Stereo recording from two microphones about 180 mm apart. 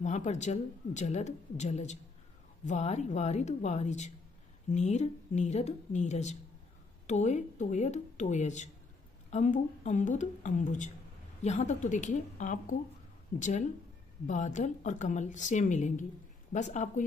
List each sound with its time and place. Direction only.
0.0 s a woman's voice: 40° left (ahead or behind)